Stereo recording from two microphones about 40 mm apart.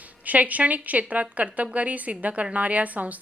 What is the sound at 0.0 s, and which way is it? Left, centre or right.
A woman's voice, right.